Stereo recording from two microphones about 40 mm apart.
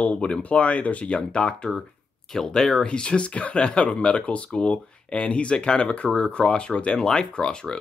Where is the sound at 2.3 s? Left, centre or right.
Centre.